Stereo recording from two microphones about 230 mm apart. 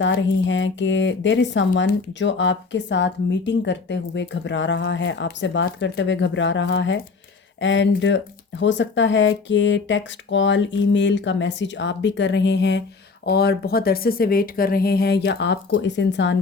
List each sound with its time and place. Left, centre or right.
0.0 s speech: left